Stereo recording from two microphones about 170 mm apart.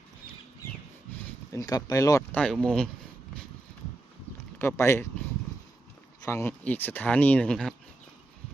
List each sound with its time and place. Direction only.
1.5 s speech: 20° left (ahead or behind)
2.4 s speech: 5° left (ahead or behind)
4.5 s speech: 15° left (ahead or behind)
6.2 s speech: 15° left (ahead or behind)